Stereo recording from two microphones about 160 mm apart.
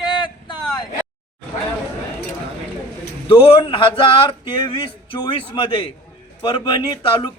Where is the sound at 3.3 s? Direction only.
35° left (ahead or behind).